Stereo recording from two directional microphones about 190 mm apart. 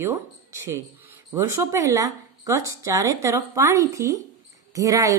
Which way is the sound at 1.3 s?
15° right (ahead or behind).